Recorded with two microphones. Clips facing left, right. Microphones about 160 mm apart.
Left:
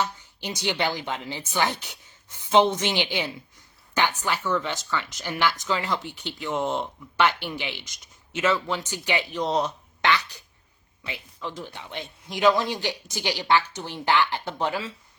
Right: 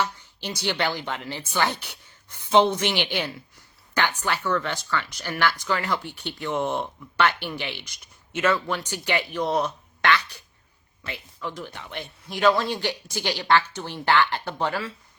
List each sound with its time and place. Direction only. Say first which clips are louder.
0.0 s a woman's voice: right 1 dB; 15° left (ahead or behind)